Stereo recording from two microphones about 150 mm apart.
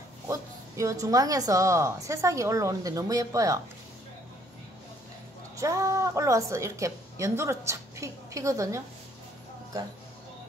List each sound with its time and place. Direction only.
0.3 s a woman's voice: 20° right (ahead or behind)
5.6 s a woman's voice: 20° right (ahead or behind)